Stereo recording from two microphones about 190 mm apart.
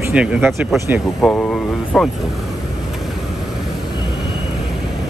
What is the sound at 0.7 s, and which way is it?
Speech, 15° right (ahead or behind).